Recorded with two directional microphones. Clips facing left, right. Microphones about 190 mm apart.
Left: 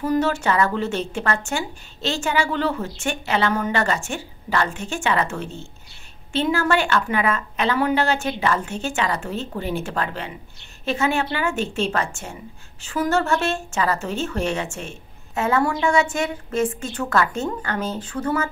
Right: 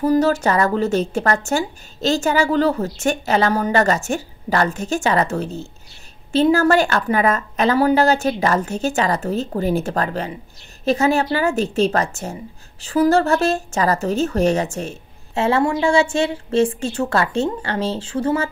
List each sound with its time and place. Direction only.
0.0 s a woman's voice: 35° right (ahead or behind)